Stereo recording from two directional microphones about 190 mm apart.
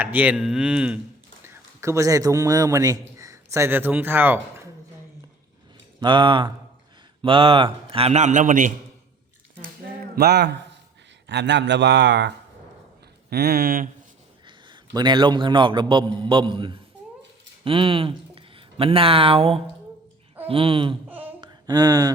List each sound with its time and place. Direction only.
0.0 s a man's voice: 10° right (ahead or behind)
6.0 s a man's voice: 25° right (ahead or behind); by 8.7 s 45° right (ahead or behind)
10.2 s speech: 60° right (ahead or behind)
13.3 s speech: 55° right (ahead or behind)
14.4 s a man's voice: 25° right (ahead or behind)
21.1 s a sound: 10° right (ahead or behind)
21.4 s a sound: 20° right (ahead or behind)